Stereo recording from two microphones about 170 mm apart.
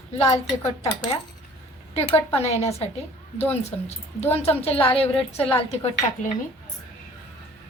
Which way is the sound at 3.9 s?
40° left (ahead or behind).